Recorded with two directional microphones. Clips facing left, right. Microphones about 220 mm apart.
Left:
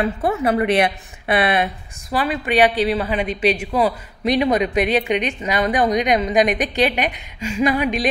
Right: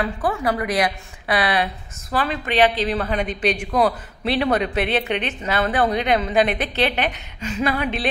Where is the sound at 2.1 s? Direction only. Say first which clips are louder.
Left 3 dB; 10° left (ahead or behind).